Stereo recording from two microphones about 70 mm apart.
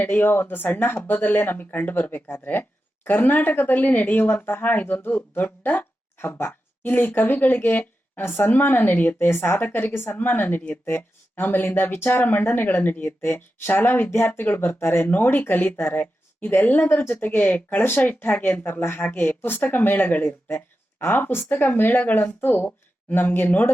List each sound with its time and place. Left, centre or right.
0.0 s speech: left
9.3 s a woman's voice: left
9.6 s speech: left